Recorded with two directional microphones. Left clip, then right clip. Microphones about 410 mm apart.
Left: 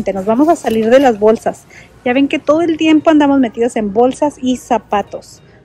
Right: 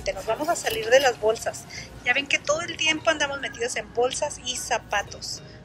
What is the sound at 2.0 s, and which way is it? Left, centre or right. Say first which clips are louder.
A woman's voice: left 9 dB; centre.